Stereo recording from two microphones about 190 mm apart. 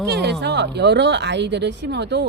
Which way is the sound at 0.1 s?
60° right (ahead or behind).